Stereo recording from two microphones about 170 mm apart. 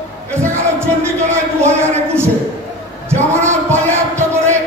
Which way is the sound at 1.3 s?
15° right (ahead or behind).